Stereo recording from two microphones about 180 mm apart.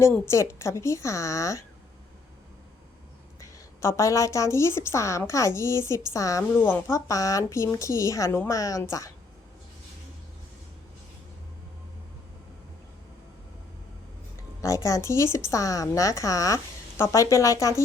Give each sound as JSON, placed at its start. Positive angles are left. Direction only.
{"t": 0.0, "sound": "a woman's voice", "side_deg": 15}
{"t": 3.4, "sound": "a woman's voice", "side_deg": 15}
{"t": 14.6, "sound": "a woman's voice", "side_deg": 15}